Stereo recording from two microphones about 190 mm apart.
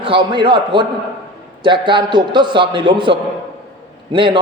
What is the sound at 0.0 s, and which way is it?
A man's voice, 25° right (ahead or behind).